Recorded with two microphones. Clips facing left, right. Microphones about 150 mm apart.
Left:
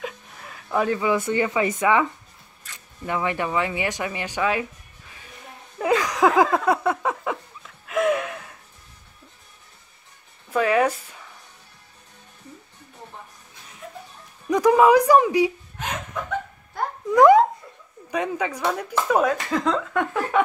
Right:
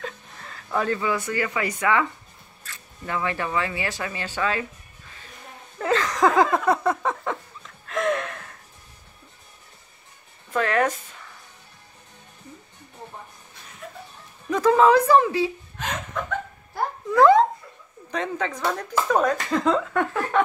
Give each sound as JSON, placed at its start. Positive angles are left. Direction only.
{"t": 0.0, "sound": "speech", "side_deg": 10}
{"t": 5.8, "sound": "a sound", "side_deg": 10}
{"t": 10.5, "sound": "speech", "side_deg": 10}
{"t": 14.5, "sound": "a woman's voice", "side_deg": 15}
{"t": 17.1, "sound": "speech", "side_deg": 15}